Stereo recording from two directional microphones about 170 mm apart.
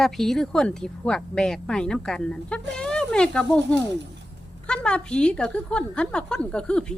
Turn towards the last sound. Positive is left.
turn(degrees=5)  # may be behind; listen again after turning